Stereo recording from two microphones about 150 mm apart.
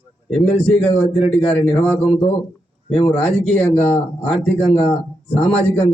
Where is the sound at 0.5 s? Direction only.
5° left (ahead or behind).